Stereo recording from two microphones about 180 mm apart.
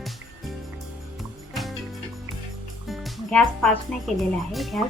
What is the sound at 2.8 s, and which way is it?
Speech, centre (ahead or behind).